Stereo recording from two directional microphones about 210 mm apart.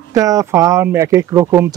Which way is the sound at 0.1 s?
15° right (ahead or behind).